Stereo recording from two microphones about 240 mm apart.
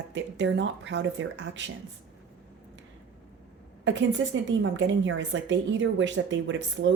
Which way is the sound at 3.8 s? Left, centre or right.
Right.